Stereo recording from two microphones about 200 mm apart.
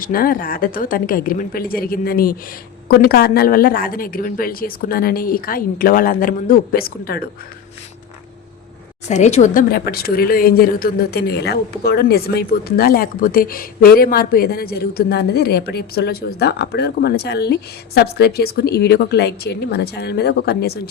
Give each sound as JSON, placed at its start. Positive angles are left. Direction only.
{"t": 0.0, "sound": "speech", "side_deg": 45}
{"t": 9.0, "sound": "a woman's voice", "side_deg": 35}
{"t": 9.7, "sound": "speech", "side_deg": 50}